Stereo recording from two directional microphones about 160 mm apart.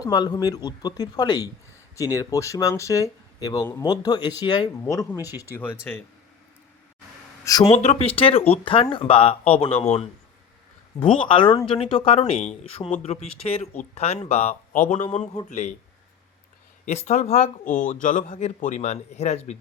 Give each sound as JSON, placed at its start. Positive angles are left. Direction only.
{"t": 0.0, "sound": "speech", "side_deg": 25}
{"t": 5.9, "sound": "speech", "side_deg": 5}
{"t": 7.6, "sound": "a man's voice", "side_deg": 45}
{"t": 11.0, "sound": "a man's voice", "side_deg": 35}
{"t": 16.8, "sound": "a man's voice", "side_deg": 45}